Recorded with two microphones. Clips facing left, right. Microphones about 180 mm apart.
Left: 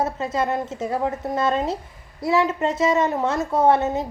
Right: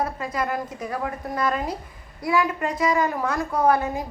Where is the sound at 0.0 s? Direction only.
25° left (ahead or behind).